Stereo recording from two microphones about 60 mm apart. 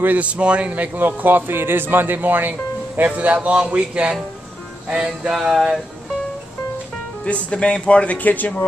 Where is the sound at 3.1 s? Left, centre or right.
Right.